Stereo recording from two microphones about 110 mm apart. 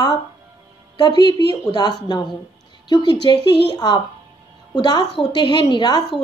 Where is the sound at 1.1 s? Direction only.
55° right (ahead or behind).